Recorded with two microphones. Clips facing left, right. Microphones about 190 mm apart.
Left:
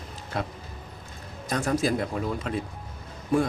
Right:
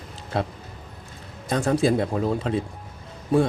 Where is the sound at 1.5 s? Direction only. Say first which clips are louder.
Right 4 dB; 30° right (ahead or behind).